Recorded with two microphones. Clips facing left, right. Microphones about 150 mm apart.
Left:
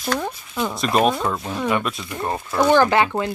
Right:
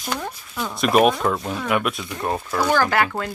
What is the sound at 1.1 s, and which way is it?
Speech, 5° left (ahead or behind).